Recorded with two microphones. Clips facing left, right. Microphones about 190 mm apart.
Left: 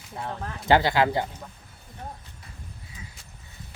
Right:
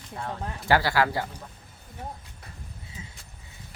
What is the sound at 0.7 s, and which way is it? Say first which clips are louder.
Speech: left 3 dB; 20° left (ahead or behind).